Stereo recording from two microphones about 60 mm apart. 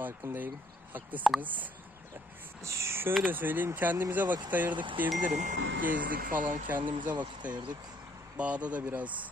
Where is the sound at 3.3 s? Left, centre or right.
Right.